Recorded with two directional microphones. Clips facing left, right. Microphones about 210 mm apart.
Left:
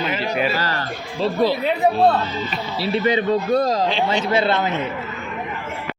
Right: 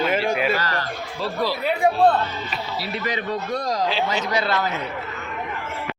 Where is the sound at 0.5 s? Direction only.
30° left (ahead or behind).